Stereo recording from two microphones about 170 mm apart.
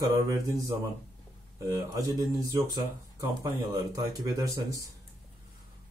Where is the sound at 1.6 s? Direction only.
20° right (ahead or behind).